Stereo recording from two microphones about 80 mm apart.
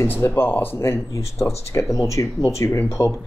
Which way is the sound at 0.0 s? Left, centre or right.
Left.